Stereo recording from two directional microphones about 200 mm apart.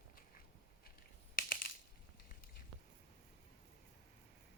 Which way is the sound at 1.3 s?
45° left (ahead or behind).